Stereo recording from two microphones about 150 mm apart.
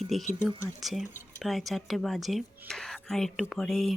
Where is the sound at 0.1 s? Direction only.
Centre (ahead or behind).